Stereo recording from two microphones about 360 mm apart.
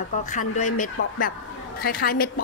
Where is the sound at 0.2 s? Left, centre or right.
Left.